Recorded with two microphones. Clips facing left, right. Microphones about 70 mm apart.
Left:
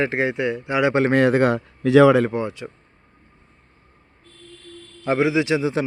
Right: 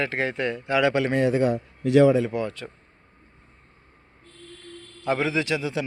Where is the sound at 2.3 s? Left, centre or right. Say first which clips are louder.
Left 3 dB; left.